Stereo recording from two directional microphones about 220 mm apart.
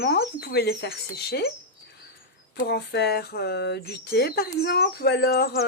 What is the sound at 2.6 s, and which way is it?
Speech, 50° left (ahead or behind).